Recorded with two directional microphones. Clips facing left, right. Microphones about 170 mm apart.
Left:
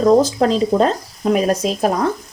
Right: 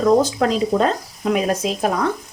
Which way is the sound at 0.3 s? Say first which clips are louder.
Left 3 dB; 30° left (ahead or behind).